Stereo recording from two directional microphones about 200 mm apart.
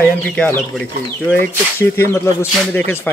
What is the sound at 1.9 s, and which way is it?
Speech, 10° left (ahead or behind).